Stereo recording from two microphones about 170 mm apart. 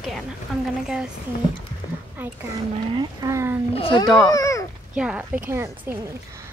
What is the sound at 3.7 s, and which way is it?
Speech, 30° left (ahead or behind).